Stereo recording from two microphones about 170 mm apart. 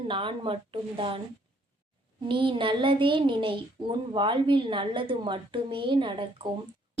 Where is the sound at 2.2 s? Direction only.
30° right (ahead or behind).